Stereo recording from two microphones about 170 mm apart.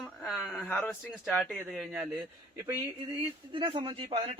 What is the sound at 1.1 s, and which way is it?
Speech, centre (ahead or behind).